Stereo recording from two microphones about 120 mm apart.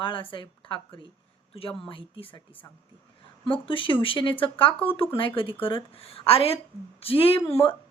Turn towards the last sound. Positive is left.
turn(degrees=50)  # may be behind; listen again after turning